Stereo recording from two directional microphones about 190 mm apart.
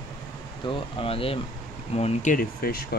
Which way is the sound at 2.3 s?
55° left (ahead or behind).